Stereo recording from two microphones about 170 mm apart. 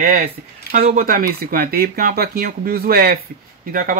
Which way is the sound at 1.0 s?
60° right (ahead or behind).